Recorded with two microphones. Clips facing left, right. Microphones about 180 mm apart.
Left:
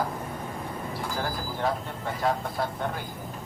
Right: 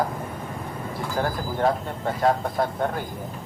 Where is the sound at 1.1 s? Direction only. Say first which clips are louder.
Right 9 dB; 50° right (ahead or behind).